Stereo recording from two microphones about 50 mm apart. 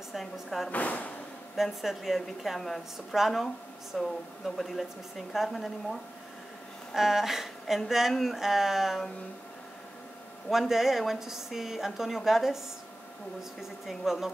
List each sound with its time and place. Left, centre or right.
0.1 s a woman's voice: centre
0.7 s speech: left
1.6 s a woman's voice: centre
7.0 s speech: centre
10.7 s speech: centre